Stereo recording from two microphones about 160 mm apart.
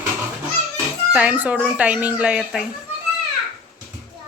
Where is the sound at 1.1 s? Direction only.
10° right (ahead or behind).